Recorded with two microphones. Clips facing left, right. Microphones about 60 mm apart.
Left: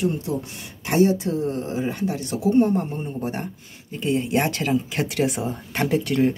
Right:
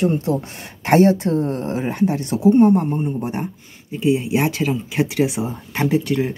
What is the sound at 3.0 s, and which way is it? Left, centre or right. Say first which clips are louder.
Speech: right 5 dB; centre.